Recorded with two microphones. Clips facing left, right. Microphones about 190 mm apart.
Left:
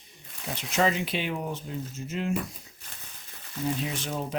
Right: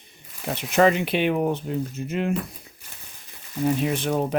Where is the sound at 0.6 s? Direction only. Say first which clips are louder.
Right 7 dB; 60° right (ahead or behind).